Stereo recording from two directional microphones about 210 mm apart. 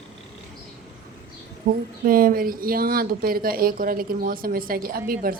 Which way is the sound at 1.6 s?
50° right (ahead or behind).